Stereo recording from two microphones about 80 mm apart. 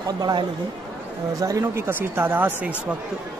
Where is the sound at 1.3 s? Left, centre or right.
Right.